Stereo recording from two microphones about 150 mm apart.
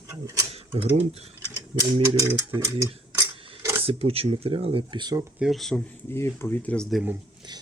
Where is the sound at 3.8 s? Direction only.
40° right (ahead or behind).